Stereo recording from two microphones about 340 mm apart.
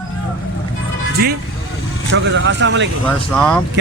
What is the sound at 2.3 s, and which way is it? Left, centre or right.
Speech, right.